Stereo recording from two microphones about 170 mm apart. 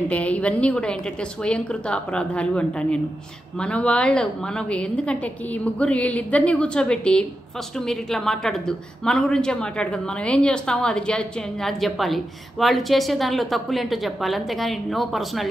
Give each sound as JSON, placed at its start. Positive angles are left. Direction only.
{"t": 0.1, "sound": "a woman's voice", "side_deg": 10}